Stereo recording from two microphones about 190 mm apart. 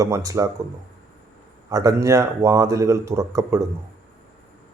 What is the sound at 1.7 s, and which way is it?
Speech, 15° right (ahead or behind).